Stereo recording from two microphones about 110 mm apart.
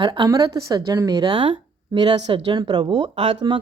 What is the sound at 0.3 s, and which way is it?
A woman's voice, 30° right (ahead or behind).